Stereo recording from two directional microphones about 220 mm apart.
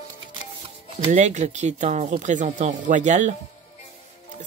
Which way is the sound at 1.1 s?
30° right (ahead or behind).